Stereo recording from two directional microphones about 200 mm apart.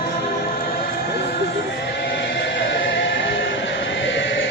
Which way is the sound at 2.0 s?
60° left (ahead or behind).